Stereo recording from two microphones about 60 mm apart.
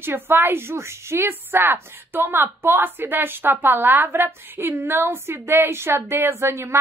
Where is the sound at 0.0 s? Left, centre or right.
Right.